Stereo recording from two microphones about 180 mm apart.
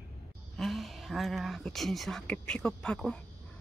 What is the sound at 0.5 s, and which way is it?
Speech, centre (ahead or behind).